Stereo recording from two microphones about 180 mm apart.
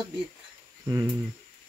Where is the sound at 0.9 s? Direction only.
20° right (ahead or behind).